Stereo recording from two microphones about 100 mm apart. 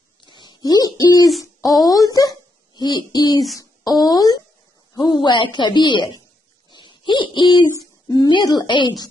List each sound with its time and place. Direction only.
0.2 s owl: 50° left (ahead or behind)
1.6 s a sound: centre (ahead or behind)
2.0 s a sound: 40° left (ahead or behind)
4.9 s a woman's voice: 45° left (ahead or behind)
6.7 s owl: 50° left (ahead or behind)
8.1 s a woman's voice: 45° left (ahead or behind)